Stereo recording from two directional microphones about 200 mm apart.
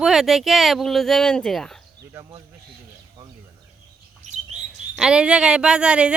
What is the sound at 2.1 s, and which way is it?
Speech, 15° right (ahead or behind).